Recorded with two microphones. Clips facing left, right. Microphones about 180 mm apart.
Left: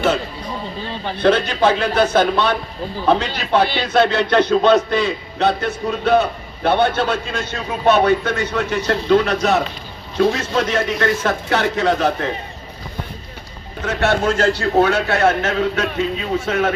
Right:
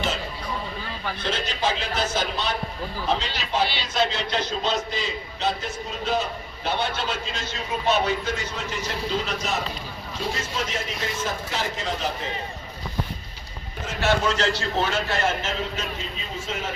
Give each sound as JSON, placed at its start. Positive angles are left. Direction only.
{"t": 0.8, "sound": "a sound", "side_deg": 30}
{"t": 1.2, "sound": "a man's voice", "side_deg": 60}
{"t": 13.8, "sound": "a man's voice", "side_deg": 60}